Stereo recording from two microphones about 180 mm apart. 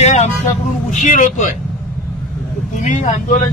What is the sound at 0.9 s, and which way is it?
Speech, 40° left (ahead or behind).